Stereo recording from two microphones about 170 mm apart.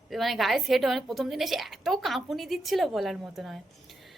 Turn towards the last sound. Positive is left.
turn(degrees=0)  # may be behind; listen again after turning